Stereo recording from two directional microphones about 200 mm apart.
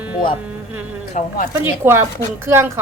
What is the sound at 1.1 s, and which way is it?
Speech, 40° left (ahead or behind).